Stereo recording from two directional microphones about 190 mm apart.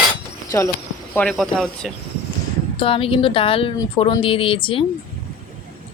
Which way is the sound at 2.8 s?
30° left (ahead or behind).